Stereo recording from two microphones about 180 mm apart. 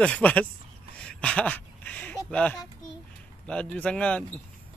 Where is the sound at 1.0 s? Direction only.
5° left (ahead or behind).